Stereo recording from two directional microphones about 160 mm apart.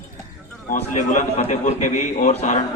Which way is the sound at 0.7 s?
55° left (ahead or behind).